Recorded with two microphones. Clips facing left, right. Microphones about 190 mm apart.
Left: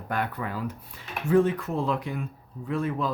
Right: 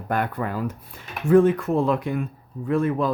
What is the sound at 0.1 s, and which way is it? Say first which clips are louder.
Speech: right 5 dB; 50° right (ahead or behind).